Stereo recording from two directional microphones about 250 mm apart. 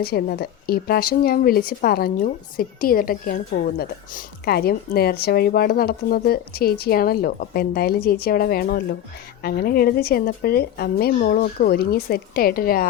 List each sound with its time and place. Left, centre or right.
0.0 s speech: left